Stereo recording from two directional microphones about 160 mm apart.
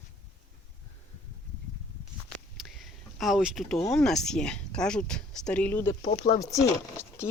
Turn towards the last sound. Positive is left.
turn(degrees=15)  # may be behind; listen again after turning